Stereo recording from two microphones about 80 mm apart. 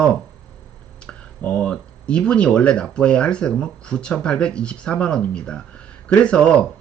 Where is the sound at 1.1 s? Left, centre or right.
Centre.